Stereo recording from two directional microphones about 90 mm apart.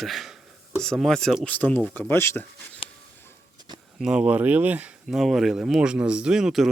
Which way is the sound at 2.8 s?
90° left.